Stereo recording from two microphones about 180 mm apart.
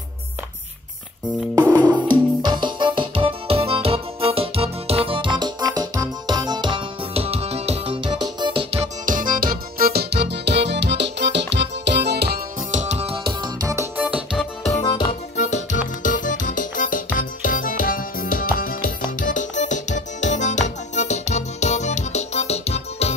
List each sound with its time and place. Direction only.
1.5 s music: 15° right (ahead or behind)
2.4 s music: 25° right (ahead or behind)
9.0 s music: 50° right (ahead or behind); by 12.4 s 65° right (ahead or behind)
13.0 s music: 30° right (ahead or behind); by 14.5 s 5° right (ahead or behind)
14.6 s music: 20° left (ahead or behind)
15.5 s music: 45° left (ahead or behind)